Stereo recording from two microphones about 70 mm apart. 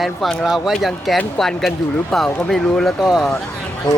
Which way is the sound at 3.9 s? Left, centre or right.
Left.